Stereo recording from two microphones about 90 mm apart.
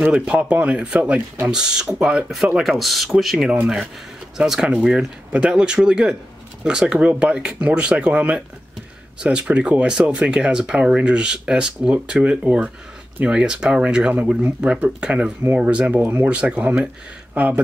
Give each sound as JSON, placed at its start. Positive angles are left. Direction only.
{"t": 0.0, "sound": "speech", "side_deg": -10}
{"t": 16.0, "sound": "speech", "side_deg": -25}
{"t": 16.3, "sound": "speech", "side_deg": -15}